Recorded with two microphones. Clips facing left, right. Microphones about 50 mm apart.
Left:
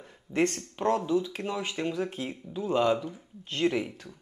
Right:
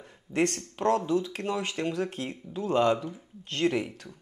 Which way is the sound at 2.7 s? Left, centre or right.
Centre.